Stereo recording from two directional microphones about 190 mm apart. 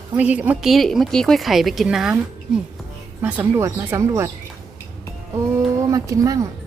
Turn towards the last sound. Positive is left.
turn(degrees=-20)  # may be behind; listen again after turning